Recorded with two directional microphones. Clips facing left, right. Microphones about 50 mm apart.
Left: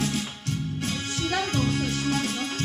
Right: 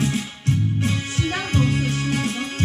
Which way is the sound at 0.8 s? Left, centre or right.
Right.